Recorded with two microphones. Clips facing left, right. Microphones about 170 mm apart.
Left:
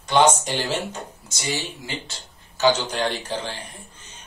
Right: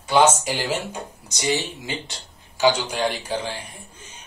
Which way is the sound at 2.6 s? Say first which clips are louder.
Even; 10° right (ahead or behind).